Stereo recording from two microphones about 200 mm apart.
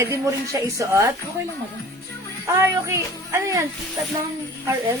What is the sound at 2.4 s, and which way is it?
Speech, 15° right (ahead or behind).